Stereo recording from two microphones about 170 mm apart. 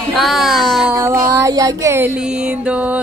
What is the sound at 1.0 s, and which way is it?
Mantra, 15° right (ahead or behind).